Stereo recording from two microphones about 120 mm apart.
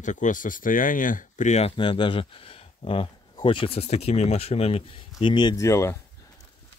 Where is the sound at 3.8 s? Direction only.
60° left (ahead or behind); by 5.5 s 40° left (ahead or behind).